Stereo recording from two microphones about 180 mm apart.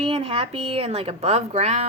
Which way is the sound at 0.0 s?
30° right (ahead or behind).